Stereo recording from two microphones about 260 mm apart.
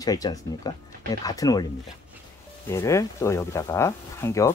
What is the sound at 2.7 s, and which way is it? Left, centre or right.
Speech, centre.